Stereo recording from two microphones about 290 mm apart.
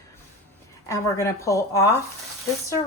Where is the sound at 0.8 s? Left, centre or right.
Centre.